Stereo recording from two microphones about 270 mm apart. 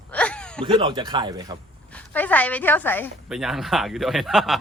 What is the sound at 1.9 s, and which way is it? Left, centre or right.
A woman's voice, centre.